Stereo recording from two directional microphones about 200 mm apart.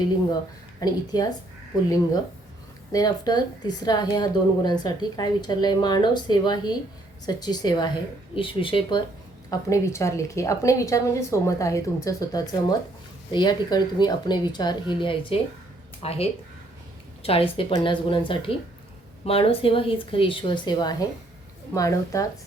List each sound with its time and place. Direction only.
0.8 s a woman's voice: 20° left (ahead or behind)
2.9 s a woman's voice: 20° left (ahead or behind)